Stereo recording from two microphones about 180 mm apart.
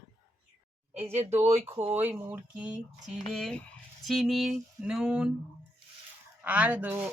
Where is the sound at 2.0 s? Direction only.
10° right (ahead or behind).